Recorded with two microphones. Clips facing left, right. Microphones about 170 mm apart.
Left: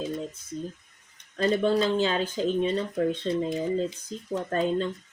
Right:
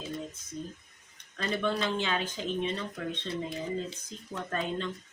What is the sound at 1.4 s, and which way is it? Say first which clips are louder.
Speech: left 8 dB; 35° left (ahead or behind).